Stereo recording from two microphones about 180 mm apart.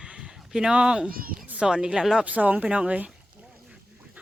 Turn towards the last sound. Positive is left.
turn(degrees=-5)  # may be behind; listen again after turning